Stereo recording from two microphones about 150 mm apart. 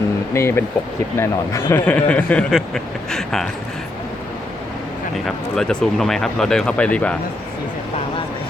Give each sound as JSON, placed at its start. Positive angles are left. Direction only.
{"t": 0.3, "sound": "speech", "side_deg": 15}
{"t": 5.1, "sound": "speech", "side_deg": 0}